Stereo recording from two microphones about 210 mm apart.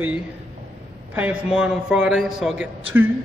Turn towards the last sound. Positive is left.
turn(degrees=-5)  # may be behind; listen again after turning